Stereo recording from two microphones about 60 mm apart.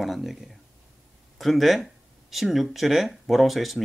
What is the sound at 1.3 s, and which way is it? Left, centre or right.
Speech, centre.